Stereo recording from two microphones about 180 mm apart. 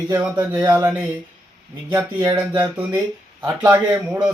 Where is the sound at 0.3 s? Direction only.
10° right (ahead or behind).